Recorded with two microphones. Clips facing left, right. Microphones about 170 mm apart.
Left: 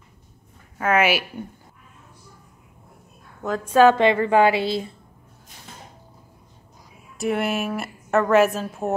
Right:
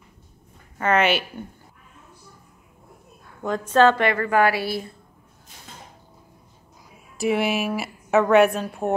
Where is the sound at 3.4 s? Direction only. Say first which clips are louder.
Left 2 dB; 5° left (ahead or behind).